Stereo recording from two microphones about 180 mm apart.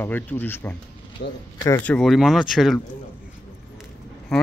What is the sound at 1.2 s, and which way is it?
Speech, 65° left (ahead or behind).